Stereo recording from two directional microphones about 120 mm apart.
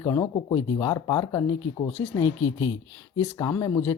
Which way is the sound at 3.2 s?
25° left (ahead or behind).